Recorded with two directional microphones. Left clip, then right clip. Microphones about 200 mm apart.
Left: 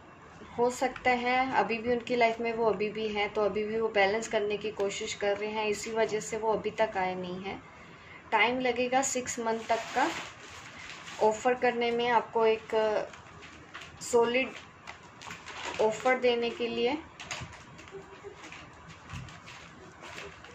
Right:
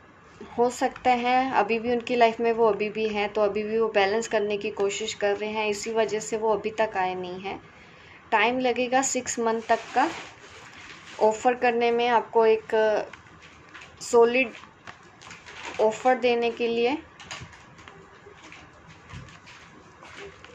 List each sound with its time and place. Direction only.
0.6 s a woman's voice: 40° right (ahead or behind)
11.1 s a woman's voice: 45° right (ahead or behind)
14.0 s a woman's voice: 45° right (ahead or behind)
15.9 s a woman's voice: 40° right (ahead or behind)